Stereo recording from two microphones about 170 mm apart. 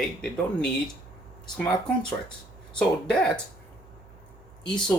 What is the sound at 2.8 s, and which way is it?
Speech, 5° left (ahead or behind).